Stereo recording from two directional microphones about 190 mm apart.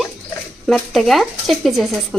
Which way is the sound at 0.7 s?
Centre (ahead or behind).